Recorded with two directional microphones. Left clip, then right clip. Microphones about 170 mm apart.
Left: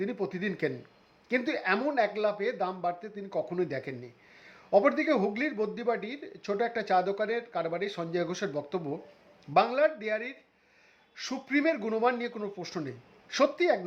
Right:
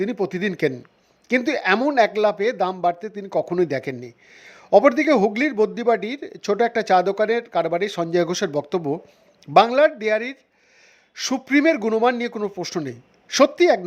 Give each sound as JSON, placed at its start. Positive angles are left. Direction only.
{"t": 0.0, "sound": "a man's voice", "side_deg": -40}